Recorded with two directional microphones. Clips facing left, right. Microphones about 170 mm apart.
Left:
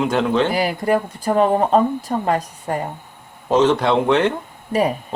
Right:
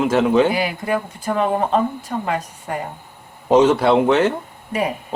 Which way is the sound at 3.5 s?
10° right (ahead or behind).